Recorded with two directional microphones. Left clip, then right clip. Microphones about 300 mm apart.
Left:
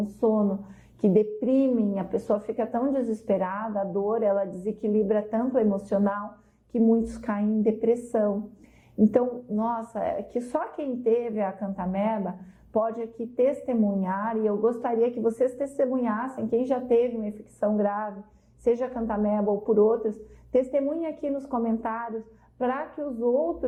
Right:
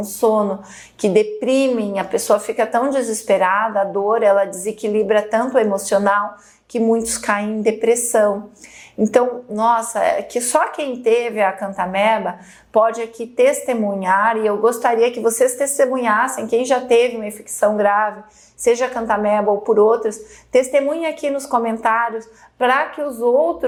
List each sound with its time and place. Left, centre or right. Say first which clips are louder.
0.0 s speech: right 8 dB; right
0.3 s a woman's voice: right 9 dB; centre
23.0 s speech: right 7 dB; right